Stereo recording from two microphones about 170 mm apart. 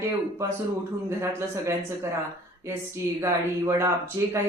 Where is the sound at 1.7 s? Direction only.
15° right (ahead or behind).